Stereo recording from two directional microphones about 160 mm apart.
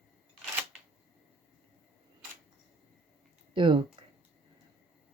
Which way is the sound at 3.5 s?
30° right (ahead or behind).